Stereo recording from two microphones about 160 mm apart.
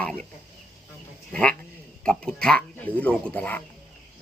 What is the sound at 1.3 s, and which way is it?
Speech, 10° left (ahead or behind).